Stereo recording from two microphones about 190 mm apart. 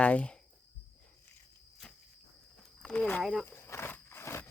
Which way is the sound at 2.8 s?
5° left (ahead or behind).